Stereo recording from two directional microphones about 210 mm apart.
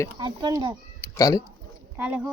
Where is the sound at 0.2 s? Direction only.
20° right (ahead or behind).